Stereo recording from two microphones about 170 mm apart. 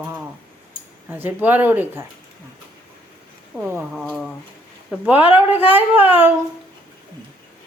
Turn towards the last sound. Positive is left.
turn(degrees=-10)  # may be behind; listen again after turning